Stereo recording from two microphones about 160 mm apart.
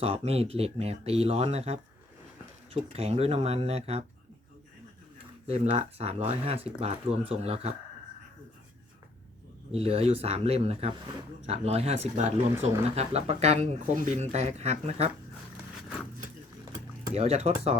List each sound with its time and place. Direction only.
0.0 s speech: 40° right (ahead or behind)
2.9 s speech: 40° right (ahead or behind)
5.5 s speech: 40° right (ahead or behind)
9.7 s speech: 40° right (ahead or behind)
17.1 s speech: 40° right (ahead or behind)